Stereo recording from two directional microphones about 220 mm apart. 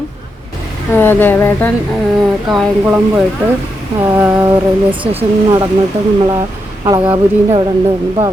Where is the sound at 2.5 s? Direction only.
5° right (ahead or behind); by 5.6 s 25° right (ahead or behind).